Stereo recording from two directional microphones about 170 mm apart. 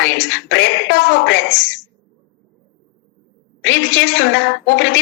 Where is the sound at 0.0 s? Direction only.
90° left.